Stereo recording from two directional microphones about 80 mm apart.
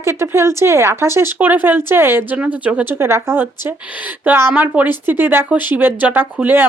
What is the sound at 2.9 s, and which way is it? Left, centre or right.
Speech, right.